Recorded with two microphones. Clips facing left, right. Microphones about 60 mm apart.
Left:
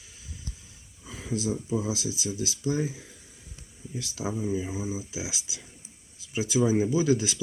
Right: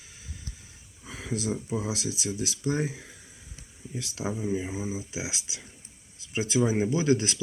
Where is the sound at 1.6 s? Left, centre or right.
Right.